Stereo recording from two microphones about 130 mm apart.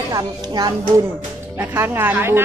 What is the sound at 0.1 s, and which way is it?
Speech, 30° right (ahead or behind).